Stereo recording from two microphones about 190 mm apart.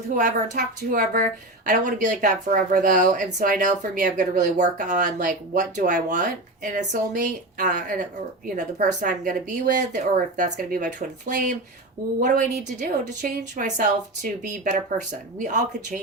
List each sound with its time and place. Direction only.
0.2 s speech: 45° right (ahead or behind)